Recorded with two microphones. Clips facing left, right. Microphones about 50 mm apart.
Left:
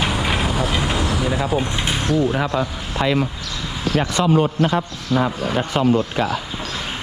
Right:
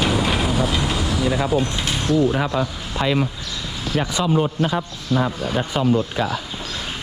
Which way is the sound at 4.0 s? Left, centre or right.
Left.